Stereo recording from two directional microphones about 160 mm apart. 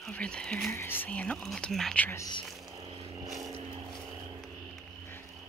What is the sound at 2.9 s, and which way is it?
Vehicle, 35° right (ahead or behind).